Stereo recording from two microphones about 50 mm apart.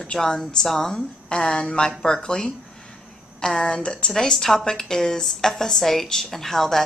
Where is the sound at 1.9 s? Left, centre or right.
Centre.